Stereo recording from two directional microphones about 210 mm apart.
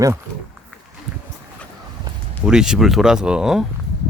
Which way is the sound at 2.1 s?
20° right (ahead or behind).